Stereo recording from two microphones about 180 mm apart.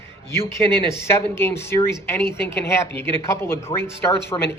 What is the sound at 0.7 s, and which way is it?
Speech, 15° left (ahead or behind).